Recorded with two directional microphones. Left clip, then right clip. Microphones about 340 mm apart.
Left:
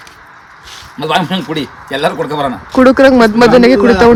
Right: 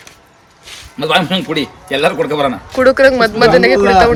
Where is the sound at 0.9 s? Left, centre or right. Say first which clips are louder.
Right 1 dB; centre.